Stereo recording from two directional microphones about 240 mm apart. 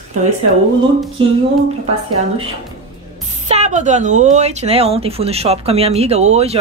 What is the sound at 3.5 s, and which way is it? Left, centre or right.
A woman's voice, right.